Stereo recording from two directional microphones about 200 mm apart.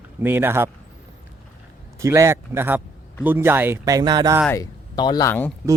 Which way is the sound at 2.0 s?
15° right (ahead or behind).